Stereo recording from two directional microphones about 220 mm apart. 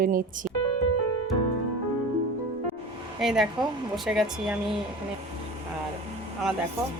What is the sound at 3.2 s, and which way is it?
Speech, centre (ahead or behind).